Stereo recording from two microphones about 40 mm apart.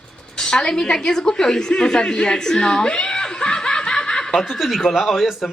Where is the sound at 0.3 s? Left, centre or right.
Centre.